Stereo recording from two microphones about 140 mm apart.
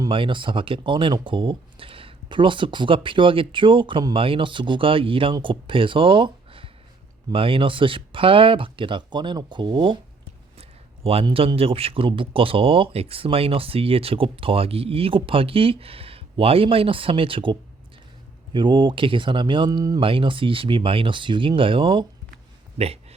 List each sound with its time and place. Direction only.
0.1 s speech: 35° right (ahead or behind)